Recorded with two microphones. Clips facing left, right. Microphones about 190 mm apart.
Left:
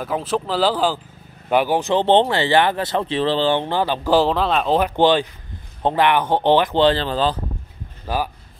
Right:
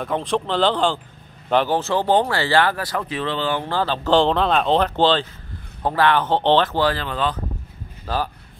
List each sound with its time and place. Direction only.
0.0 s speech: 5° left (ahead or behind); by 3.6 s 30° left (ahead or behind)
3.6 s speech: 15° left (ahead or behind)
6.8 s speech: 30° left (ahead or behind)
8.1 s speech: 15° left (ahead or behind)